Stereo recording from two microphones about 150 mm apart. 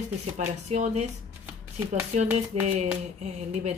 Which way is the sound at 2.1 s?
45° right (ahead or behind).